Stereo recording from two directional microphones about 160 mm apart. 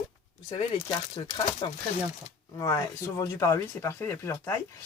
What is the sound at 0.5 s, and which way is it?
Speech, 30° left (ahead or behind).